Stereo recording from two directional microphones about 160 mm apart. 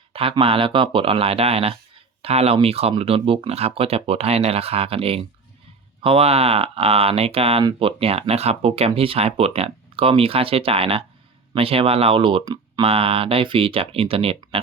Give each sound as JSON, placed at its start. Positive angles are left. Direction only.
{"t": 0.1, "sound": "speech", "side_deg": -35}